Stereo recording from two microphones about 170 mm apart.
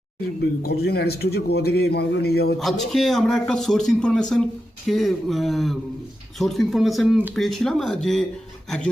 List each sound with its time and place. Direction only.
0.6 s a man's voice: 70° left (ahead or behind)
2.6 s a man's voice: centre (ahead or behind)